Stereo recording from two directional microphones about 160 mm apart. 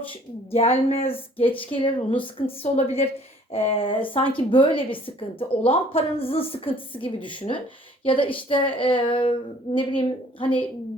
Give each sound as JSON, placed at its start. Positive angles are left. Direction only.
{"t": 0.1, "sound": "speech", "side_deg": 40}